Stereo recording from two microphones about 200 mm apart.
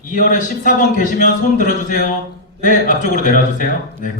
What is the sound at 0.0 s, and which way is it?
Speech, 40° left (ahead or behind).